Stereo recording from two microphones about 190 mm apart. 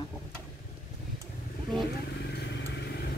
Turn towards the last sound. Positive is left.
turn(degrees=60)  # may be behind; listen again after turning